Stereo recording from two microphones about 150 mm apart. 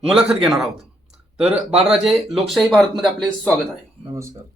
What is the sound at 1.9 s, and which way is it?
Speech, centre (ahead or behind).